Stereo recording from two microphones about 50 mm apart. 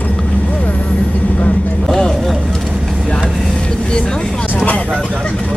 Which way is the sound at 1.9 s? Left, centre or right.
Centre.